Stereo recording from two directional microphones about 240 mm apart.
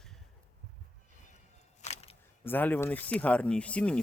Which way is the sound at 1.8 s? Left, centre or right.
Left.